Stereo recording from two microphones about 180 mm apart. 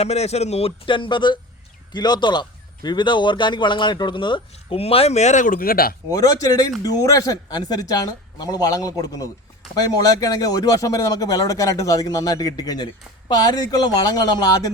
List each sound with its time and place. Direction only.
0.0 s a man's voice: 35° left (ahead or behind); by 5.9 s 55° left (ahead or behind)
6.1 s speech: 20° left (ahead or behind)